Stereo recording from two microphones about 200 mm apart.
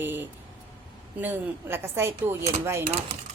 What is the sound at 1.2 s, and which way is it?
A woman's voice, 10° right (ahead or behind).